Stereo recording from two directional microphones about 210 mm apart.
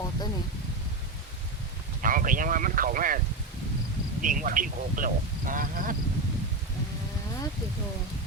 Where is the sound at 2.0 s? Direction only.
40° right (ahead or behind).